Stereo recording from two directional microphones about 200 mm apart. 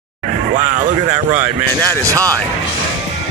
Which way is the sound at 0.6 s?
35° right (ahead or behind).